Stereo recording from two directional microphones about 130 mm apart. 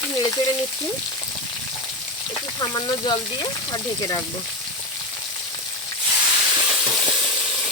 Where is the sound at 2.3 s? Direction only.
35° left (ahead or behind).